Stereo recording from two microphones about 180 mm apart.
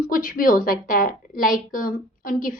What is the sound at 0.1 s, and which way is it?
A woman's voice, 50° left (ahead or behind).